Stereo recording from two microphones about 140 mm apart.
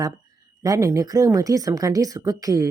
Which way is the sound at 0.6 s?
25° right (ahead or behind).